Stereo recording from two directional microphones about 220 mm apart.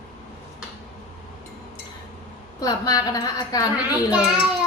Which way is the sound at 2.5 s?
15° left (ahead or behind).